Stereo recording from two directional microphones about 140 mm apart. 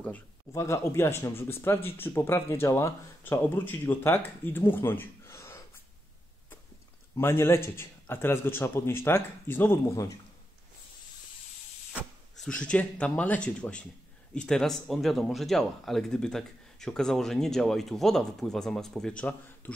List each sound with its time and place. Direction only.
0.5 s speech: 20° left (ahead or behind)
7.2 s speech: 20° left (ahead or behind)
12.4 s speech: 5° left (ahead or behind)